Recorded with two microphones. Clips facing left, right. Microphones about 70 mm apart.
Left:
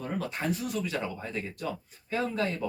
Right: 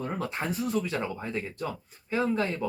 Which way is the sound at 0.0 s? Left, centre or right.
Right.